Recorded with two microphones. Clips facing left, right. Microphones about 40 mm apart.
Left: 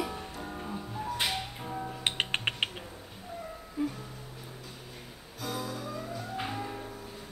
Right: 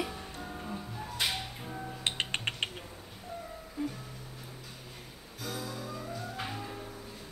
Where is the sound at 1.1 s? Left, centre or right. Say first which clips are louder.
Right 1 dB; centre.